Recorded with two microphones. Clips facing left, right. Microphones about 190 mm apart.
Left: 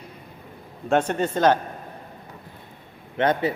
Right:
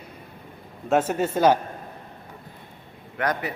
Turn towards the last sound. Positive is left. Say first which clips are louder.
# left 5 dB
turn(degrees=25)  # may be behind; listen again after turning